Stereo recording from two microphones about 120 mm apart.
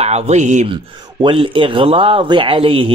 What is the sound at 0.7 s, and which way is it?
Speech, 45° right (ahead or behind).